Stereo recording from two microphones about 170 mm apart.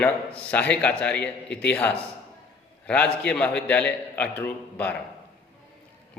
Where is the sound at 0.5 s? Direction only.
10° left (ahead or behind).